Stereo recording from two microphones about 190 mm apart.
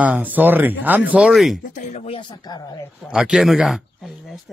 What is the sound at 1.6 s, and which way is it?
Speech, 40° left (ahead or behind).